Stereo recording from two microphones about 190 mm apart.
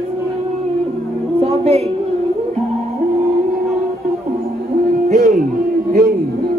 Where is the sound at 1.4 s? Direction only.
30° right (ahead or behind).